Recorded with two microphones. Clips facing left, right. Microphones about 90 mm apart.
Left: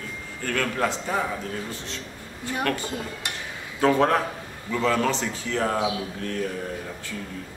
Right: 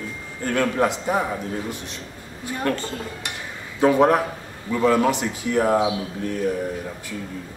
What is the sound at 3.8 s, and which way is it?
A man's voice, 15° right (ahead or behind).